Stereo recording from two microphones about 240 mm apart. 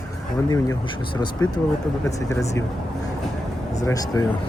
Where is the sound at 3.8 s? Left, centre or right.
Centre.